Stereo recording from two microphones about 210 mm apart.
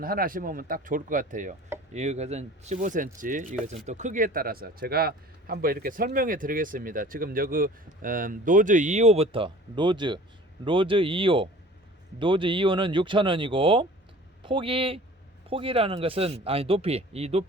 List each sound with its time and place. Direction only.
0.0 s a man's voice: 45° right (ahead or behind)